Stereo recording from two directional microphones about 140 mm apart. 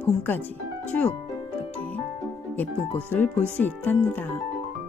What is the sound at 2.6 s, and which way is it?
Speech, 10° left (ahead or behind).